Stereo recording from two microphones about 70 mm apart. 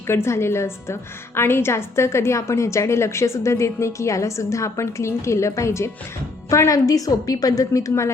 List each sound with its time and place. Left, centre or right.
0.1 s a woman's voice: left